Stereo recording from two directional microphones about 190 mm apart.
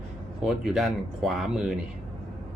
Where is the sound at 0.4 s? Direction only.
Centre (ahead or behind).